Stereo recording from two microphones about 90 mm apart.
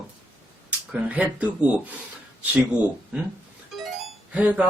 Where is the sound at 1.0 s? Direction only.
15° right (ahead or behind).